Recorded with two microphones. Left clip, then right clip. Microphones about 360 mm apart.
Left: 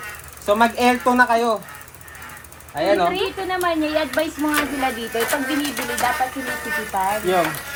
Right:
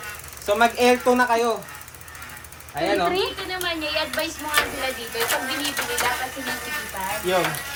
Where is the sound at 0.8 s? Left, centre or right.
Centre.